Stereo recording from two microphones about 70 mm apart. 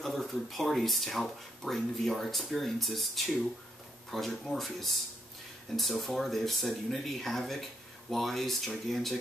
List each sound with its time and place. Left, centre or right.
0.0 s speech: centre